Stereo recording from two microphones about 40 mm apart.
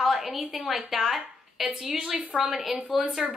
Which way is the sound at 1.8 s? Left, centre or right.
Right.